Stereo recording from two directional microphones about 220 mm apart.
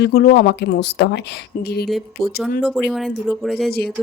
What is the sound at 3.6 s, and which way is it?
Speech, 45° left (ahead or behind).